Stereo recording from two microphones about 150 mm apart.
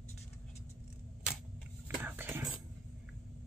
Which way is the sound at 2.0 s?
15° right (ahead or behind).